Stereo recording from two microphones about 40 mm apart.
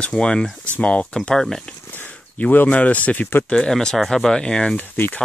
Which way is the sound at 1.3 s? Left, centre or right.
Centre.